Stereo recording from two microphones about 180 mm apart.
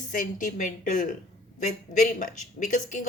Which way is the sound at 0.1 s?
45° left (ahead or behind).